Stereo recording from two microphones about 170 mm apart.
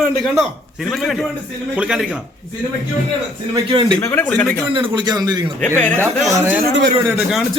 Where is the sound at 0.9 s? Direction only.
Centre (ahead or behind).